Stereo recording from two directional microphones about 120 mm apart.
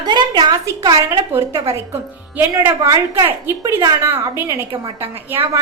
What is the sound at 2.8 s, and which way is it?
A woman's voice, 30° right (ahead or behind).